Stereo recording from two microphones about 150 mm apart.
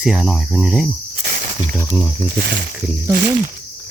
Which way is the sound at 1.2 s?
80° right.